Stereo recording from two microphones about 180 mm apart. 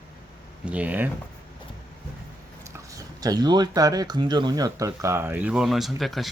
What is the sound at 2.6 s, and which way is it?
Speech, 15° right (ahead or behind).